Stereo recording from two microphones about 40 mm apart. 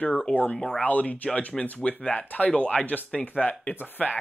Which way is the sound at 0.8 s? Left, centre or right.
Left.